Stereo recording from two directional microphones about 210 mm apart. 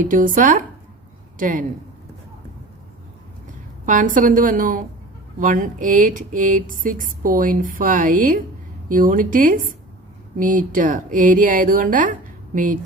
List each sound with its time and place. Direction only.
0.0 s speech: 40° right (ahead or behind)
3.8 s speech: 40° right (ahead or behind)